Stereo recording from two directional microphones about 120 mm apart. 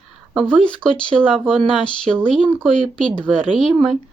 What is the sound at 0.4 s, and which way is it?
Speech, 10° left (ahead or behind).